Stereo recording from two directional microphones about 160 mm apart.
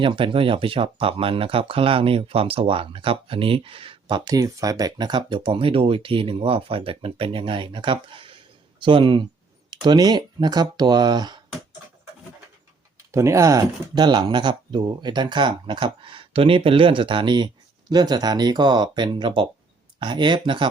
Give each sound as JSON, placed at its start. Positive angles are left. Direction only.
{"t": 0.0, "sound": "speech", "side_deg": -30}
{"t": 4.3, "sound": "speech", "side_deg": -20}
{"t": 13.1, "sound": "speech", "side_deg": -20}